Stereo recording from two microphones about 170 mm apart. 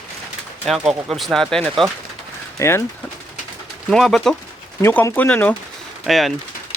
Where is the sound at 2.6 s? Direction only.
15° left (ahead or behind).